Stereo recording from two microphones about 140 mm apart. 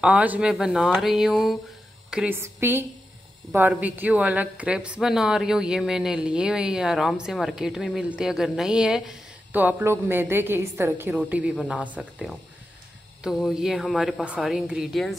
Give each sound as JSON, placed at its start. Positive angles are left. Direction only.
{"t": 0.0, "sound": "a woman's voice", "side_deg": -10}